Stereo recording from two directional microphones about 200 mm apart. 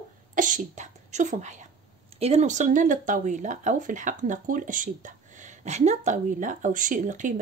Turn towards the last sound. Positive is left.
turn(degrees=-40)  # may be behind; listen again after turning